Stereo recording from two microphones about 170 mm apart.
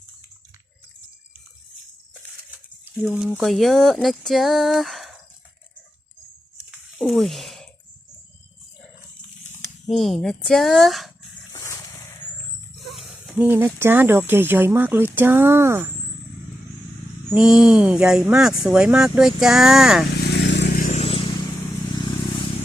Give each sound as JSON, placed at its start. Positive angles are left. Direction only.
{"t": 3.0, "sound": "speech", "side_deg": -5}
{"t": 6.7, "sound": "a sound", "side_deg": 0}
{"t": 9.8, "sound": "speech", "side_deg": 0}
{"t": 11.5, "sound": "vehicle", "side_deg": 20}
{"t": 12.9, "sound": "a sound", "side_deg": 0}
{"t": 13.3, "sound": "speech", "side_deg": -10}
{"t": 17.3, "sound": "speech", "side_deg": -5}
{"t": 20.1, "sound": "vehicle", "side_deg": 70}
{"t": 20.7, "sound": "vehicle", "side_deg": 45}